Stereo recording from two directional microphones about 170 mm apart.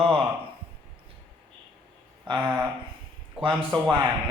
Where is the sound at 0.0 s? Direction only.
35° right (ahead or behind).